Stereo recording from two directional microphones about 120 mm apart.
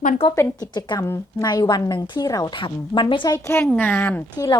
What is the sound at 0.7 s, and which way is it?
Speech, 40° left (ahead or behind).